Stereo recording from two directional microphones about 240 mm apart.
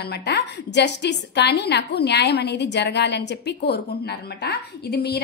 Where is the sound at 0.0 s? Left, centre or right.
Left.